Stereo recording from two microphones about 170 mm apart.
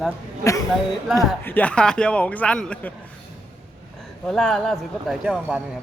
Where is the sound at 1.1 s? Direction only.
Centre (ahead or behind).